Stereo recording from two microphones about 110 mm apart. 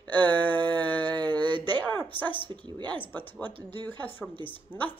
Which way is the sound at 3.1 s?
15° left (ahead or behind).